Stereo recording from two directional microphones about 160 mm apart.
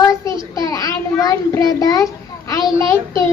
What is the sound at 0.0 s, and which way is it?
Child singing, 20° left (ahead or behind).